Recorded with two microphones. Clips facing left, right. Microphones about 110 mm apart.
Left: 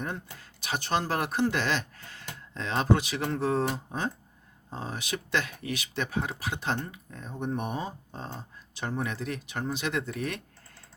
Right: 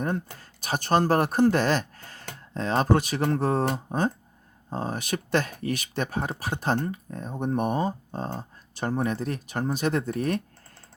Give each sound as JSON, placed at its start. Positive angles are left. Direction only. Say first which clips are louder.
{"t": 0.0, "sound": "speech", "louder": "right 7 dB", "side_deg": -45}